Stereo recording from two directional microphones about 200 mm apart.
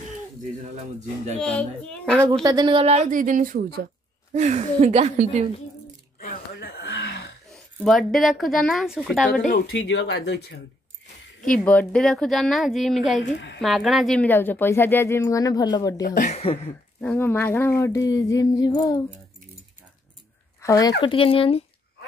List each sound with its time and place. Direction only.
1.4 s a woman's voice: 5° left (ahead or behind)
2.4 s a woman's voice: 20° right (ahead or behind)
6.1 s throat clearing: 50° left (ahead or behind)
7.5 s a woman's voice: centre (ahead or behind)
9.4 s speech: 45° left (ahead or behind)
9.8 s speech: 65° left (ahead or behind)
11.5 s a woman's voice: 5° left (ahead or behind)
13.2 s speech: 60° left (ahead or behind)
13.6 s speech: centre (ahead or behind); by 16.0 s 20° left (ahead or behind)
16.2 s speech: 35° left (ahead or behind)
17.0 s speech: 10° left (ahead or behind)
20.6 s speech: 15° left (ahead or behind)